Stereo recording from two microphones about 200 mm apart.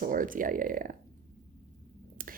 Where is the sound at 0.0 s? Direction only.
45° right (ahead or behind).